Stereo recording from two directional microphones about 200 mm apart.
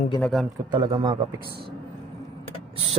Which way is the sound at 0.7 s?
20° right (ahead or behind).